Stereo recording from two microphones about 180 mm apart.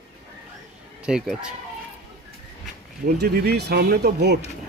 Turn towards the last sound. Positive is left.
turn(degrees=-65)  # may be behind; listen again after turning